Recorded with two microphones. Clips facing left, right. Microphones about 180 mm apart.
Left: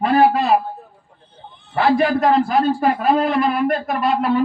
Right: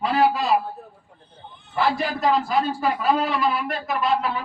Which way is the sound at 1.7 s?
60° left (ahead or behind).